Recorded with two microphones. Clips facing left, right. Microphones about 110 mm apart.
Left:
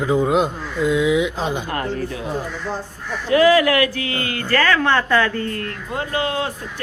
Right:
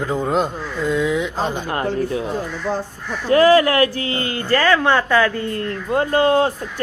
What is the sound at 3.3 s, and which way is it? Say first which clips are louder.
Speech: right 1 dB; 35° right (ahead or behind).